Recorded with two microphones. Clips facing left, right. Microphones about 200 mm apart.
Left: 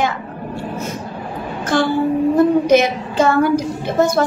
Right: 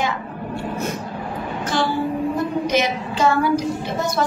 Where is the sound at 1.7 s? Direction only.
55° left (ahead or behind).